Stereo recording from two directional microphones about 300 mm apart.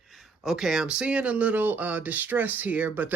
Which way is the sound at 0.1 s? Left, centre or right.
Centre.